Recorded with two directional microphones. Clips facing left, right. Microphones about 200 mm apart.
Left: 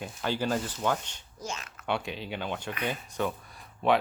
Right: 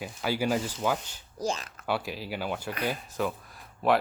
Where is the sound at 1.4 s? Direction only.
35° right (ahead or behind).